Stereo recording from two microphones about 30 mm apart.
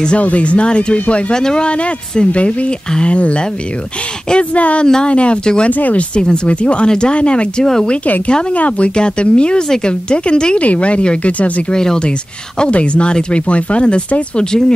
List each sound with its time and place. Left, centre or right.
0.2 s speech: left
0.9 s speech: left
1.3 s speech: left
1.7 s speech: left
5.4 s speech: left
5.7 s speech: left
6.4 s speech: left
8.5 s speech: left
8.9 s speech: left
10.6 s speech: left
11.3 s speech: left
11.7 s speech: centre
12.5 s speech: left
14.3 s speech: left